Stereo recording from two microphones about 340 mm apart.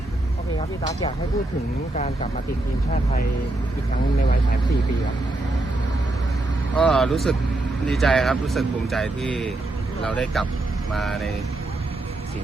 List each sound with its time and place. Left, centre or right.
0.8 s speech: centre
6.7 s speech: centre